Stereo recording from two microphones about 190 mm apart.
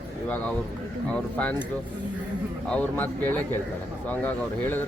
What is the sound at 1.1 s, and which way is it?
Speech, 10° left (ahead or behind).